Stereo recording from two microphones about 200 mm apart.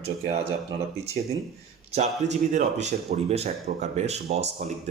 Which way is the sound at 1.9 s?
35° right (ahead or behind).